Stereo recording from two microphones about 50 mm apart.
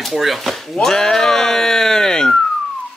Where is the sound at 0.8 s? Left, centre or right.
Centre.